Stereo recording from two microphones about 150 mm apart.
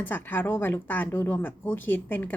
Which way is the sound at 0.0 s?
10° left (ahead or behind).